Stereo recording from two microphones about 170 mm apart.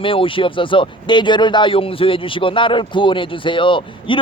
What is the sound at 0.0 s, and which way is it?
Speech, 30° left (ahead or behind).